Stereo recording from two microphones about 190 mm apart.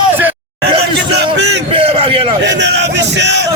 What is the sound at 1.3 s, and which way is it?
Speech, 65° right (ahead or behind).